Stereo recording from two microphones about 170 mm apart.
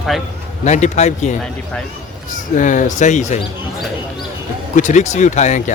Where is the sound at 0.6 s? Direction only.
45° left (ahead or behind).